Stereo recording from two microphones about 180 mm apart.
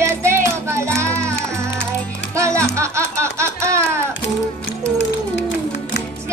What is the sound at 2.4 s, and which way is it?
Music, 15° right (ahead or behind).